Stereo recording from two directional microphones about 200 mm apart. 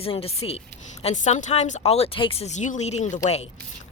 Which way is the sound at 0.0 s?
30° left (ahead or behind).